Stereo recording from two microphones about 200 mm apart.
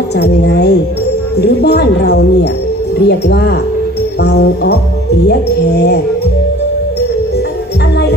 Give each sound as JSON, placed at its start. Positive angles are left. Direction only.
{"t": 0.2, "sound": "music", "side_deg": 55}